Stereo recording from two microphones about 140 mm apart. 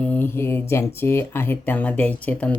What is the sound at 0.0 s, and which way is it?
Speech, 10° left (ahead or behind).